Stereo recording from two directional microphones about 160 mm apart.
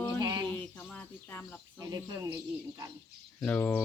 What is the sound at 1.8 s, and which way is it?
Speech, 25° right (ahead or behind).